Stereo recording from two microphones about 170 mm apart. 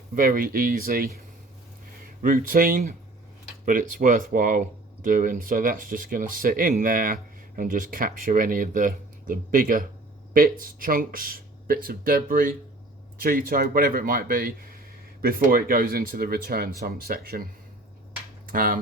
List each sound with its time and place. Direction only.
0.1 s speech: 55° right (ahead or behind)
2.2 s speech: 55° right (ahead or behind)